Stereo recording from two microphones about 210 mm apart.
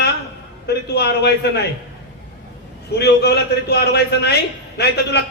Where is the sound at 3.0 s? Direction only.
50° left (ahead or behind).